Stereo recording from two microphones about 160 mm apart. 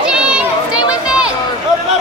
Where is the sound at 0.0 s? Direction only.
5° right (ahead or behind).